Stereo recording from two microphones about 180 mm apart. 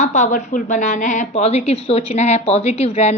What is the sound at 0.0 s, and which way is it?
A woman's voice, 40° left (ahead or behind).